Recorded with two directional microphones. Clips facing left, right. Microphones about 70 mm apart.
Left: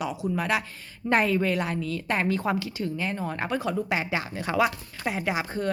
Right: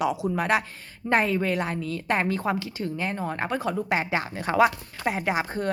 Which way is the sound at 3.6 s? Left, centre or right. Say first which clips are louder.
Right 1 dB; right.